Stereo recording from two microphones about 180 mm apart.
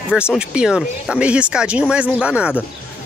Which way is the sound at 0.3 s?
5° right (ahead or behind).